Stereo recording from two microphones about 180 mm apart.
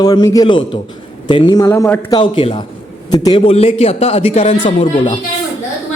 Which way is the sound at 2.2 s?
25° left (ahead or behind).